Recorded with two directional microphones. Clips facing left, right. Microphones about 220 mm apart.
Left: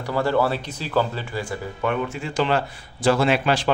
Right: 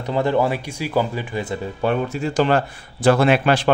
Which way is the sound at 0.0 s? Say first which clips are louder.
Right 2 dB; 20° right (ahead or behind).